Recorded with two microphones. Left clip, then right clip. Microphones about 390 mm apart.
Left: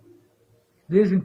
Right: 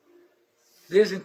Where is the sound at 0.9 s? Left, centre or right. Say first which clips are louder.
Even; centre.